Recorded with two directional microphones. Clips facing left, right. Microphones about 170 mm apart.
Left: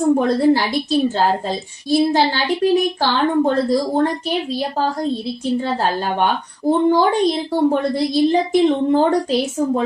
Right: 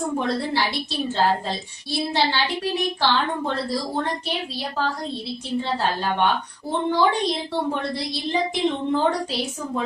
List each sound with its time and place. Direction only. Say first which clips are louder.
0.2 s a woman's voice: left 9 dB; 45° left (ahead or behind)